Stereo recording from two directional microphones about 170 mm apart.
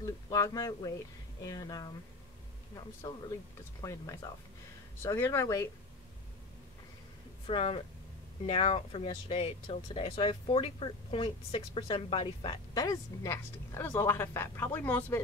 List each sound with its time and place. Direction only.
0.0 s speech: 20° left (ahead or behind)
7.4 s speech: 35° left (ahead or behind); by 15.2 s 10° left (ahead or behind)